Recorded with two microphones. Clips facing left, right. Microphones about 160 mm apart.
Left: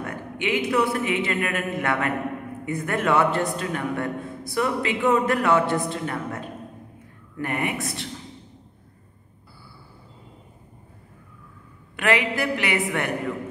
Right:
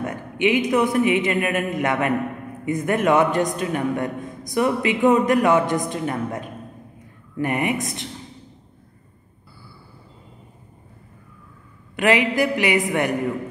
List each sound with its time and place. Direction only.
0.0 s a man's voice: 15° right (ahead or behind)
12.0 s a man's voice: 15° right (ahead or behind)